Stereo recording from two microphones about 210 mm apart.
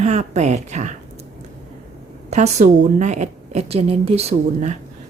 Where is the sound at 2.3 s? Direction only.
35° right (ahead or behind).